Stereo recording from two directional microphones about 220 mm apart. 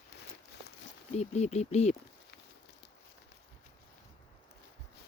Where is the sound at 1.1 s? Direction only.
30° left (ahead or behind).